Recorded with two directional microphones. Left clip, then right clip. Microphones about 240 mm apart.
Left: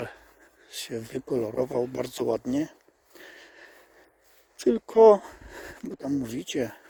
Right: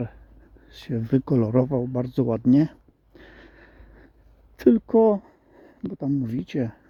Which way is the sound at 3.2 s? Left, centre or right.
Centre.